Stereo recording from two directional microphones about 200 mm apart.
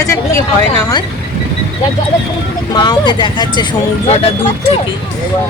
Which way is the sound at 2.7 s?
20° left (ahead or behind).